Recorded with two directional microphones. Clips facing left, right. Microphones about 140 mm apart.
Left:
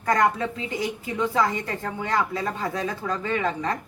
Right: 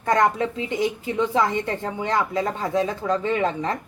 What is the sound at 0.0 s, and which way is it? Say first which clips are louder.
A woman's voice: right 2 dB; 25° right (ahead or behind).